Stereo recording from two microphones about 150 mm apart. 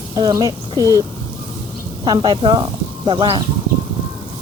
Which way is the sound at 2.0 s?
25° right (ahead or behind).